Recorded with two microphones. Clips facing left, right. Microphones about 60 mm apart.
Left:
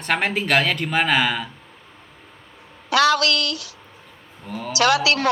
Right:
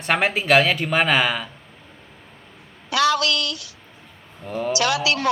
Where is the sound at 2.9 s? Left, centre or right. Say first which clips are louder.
Left 2 dB; left.